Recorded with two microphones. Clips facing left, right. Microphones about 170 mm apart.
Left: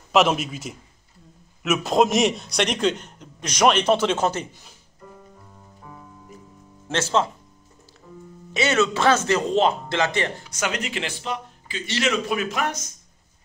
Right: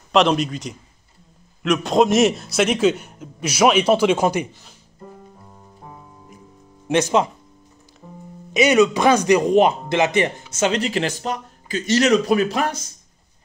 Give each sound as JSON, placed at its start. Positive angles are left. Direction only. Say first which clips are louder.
{"t": 0.1, "sound": "a man's voice", "louder": "right 2 dB", "side_deg": 5}
{"t": 6.9, "sound": "speech", "louder": "right 5 dB", "side_deg": -15}
{"t": 8.5, "sound": "speech", "louder": "right 6 dB", "side_deg": -15}